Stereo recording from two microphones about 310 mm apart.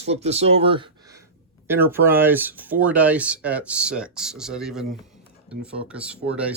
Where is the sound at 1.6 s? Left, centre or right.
Centre.